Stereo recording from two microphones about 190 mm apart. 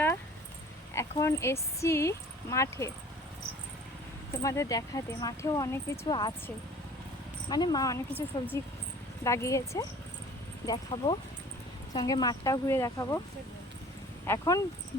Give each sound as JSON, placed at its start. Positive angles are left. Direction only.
{"t": 0.9, "sound": "speech", "side_deg": 15}
{"t": 4.4, "sound": "speech", "side_deg": 15}
{"t": 7.5, "sound": "speech", "side_deg": 20}
{"t": 14.3, "sound": "speech", "side_deg": 15}